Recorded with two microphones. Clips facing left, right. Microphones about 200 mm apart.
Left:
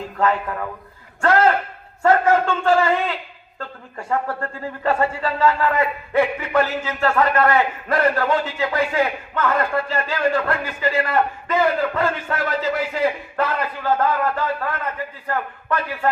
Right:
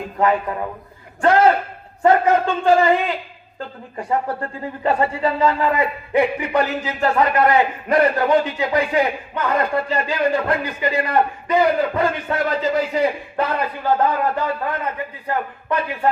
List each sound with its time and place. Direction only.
0.0 s a man's voice: 15° right (ahead or behind)